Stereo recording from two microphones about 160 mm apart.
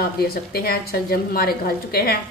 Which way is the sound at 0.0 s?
75° left (ahead or behind).